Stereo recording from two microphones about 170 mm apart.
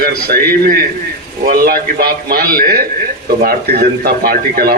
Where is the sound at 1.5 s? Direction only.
65° right (ahead or behind).